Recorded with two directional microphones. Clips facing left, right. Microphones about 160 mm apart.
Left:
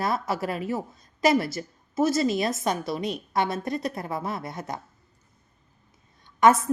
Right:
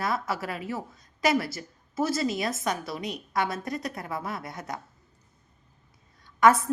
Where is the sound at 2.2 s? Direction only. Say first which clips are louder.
Left 4 dB; 25° left (ahead or behind).